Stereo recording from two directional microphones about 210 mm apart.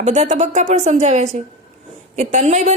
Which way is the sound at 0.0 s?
30° right (ahead or behind).